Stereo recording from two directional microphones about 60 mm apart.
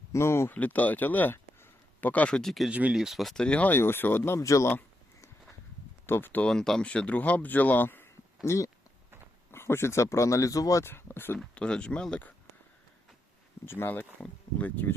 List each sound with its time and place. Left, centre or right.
0.1 s speech: left
0.5 s speech: left
2.3 s speech: centre
2.9 s speech: centre
3.3 s speech: centre
3.6 s speech: left
4.4 s speech: left
6.1 s speech: left
6.4 s speech: centre; by 8.1 s left
8.4 s speech: left
9.5 s speech: left
10.8 s speech: left
11.5 s speech: centre
13.7 s speech: left